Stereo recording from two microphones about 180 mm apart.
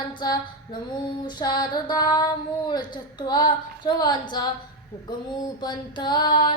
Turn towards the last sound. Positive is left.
turn(degrees=25)  # may be behind; listen again after turning